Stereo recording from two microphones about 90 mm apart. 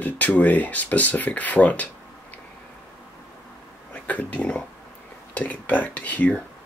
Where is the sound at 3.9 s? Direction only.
15° left (ahead or behind).